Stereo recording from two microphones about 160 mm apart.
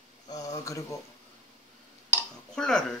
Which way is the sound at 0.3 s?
20° left (ahead or behind).